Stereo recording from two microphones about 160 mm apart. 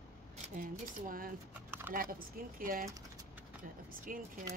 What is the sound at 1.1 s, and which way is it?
Speech, 60° right (ahead or behind).